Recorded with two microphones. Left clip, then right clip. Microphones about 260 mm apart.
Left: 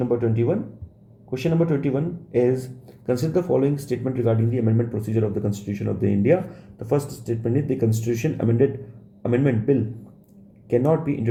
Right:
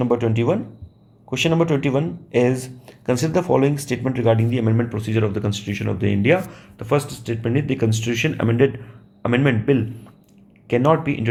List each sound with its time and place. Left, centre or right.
0.1 s speech: right
6.8 s speech: right
7.3 s speech: right
8.4 s a man's voice: right
10.7 s speech: right